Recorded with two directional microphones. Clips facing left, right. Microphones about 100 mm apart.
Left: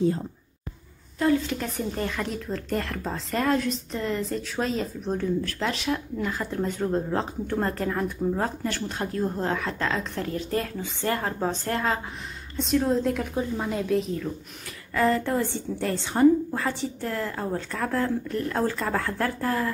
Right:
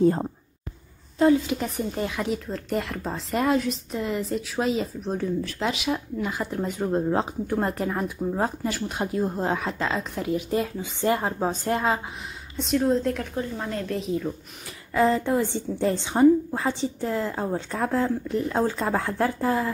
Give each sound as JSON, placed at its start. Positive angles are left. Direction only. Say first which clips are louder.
{"t": 0.0, "sound": "speech", "louder": "right 4 dB", "side_deg": -50}
{"t": 1.5, "sound": "speech", "louder": "right 2 dB", "side_deg": -10}
{"t": 12.5, "sound": "a woman's voice", "louder": "right 1 dB", "side_deg": 0}
{"t": 15.0, "sound": "speech", "louder": "right 2 dB", "side_deg": -15}